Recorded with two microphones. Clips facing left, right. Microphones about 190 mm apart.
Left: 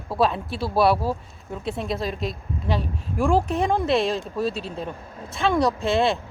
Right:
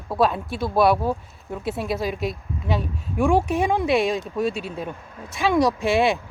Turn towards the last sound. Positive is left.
turn(degrees=-15)  # may be behind; listen again after turning